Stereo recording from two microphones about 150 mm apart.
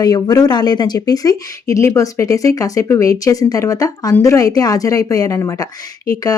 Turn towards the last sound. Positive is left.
turn(degrees=25)  # may be behind; listen again after turning